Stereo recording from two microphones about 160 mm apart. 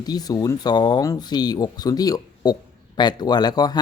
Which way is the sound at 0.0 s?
25° left (ahead or behind).